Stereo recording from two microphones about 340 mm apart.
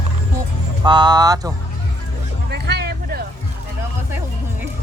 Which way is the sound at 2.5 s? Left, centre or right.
Right.